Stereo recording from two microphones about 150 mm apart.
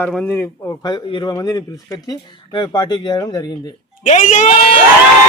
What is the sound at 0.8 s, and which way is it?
Speech, 30° left (ahead or behind).